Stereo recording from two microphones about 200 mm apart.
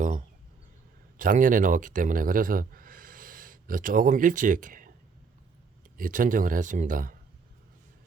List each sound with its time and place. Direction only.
1.1 s speech: 40° right (ahead or behind)
6.0 s speech: 40° right (ahead or behind)